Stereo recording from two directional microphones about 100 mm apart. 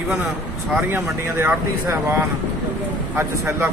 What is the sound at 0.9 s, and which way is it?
Speech, 25° right (ahead or behind).